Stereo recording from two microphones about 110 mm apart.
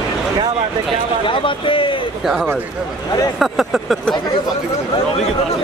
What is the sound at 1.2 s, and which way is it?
Speech, 50° left (ahead or behind).